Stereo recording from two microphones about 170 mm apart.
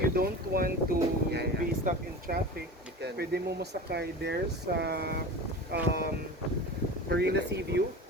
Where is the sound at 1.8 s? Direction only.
55° right (ahead or behind).